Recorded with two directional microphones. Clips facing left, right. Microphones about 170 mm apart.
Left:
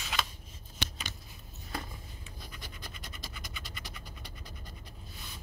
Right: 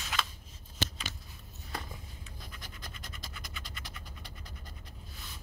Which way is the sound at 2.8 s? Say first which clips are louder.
Left 1 dB; 5° left (ahead or behind).